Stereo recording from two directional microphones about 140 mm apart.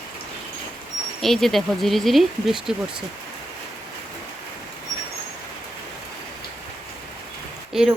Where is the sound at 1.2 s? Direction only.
Centre (ahead or behind).